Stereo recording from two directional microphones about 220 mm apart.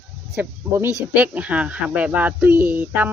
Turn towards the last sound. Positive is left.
turn(degrees=-10)  # may be behind; listen again after turning